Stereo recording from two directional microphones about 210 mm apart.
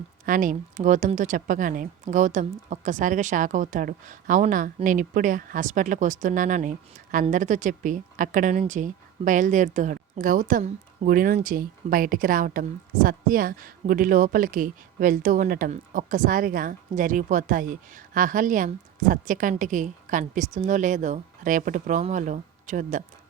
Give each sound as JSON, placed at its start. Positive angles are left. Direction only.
{"t": 0.3, "sound": "a woman's voice", "side_deg": -40}